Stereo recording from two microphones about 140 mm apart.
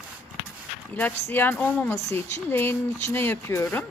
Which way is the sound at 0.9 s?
15° left (ahead or behind).